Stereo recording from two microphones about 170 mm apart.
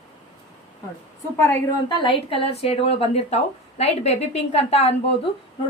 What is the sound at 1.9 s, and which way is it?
A woman's voice, 30° left (ahead or behind).